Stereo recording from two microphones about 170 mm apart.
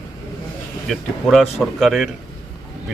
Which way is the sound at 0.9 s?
Centre (ahead or behind).